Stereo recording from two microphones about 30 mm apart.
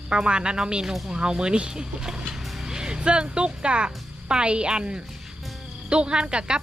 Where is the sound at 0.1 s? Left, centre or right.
Right.